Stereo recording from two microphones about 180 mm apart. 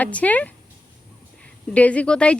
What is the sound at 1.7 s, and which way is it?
Speech, 5° left (ahead or behind).